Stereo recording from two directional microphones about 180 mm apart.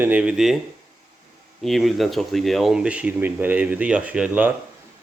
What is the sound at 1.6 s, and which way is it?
Speech, centre (ahead or behind).